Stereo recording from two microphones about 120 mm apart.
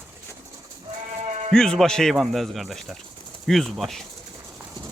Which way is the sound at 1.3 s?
70° right (ahead or behind).